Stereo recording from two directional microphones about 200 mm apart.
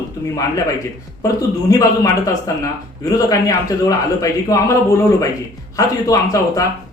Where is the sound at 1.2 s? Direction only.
15° left (ahead or behind).